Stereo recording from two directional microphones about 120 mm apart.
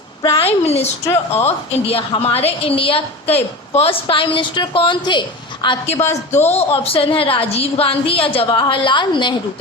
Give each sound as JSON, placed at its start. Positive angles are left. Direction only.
{"t": 0.2, "sound": "a woman's voice", "side_deg": 45}
{"t": 5.9, "sound": "a woman's voice", "side_deg": 20}
{"t": 6.3, "sound": "a woman's voice", "side_deg": 65}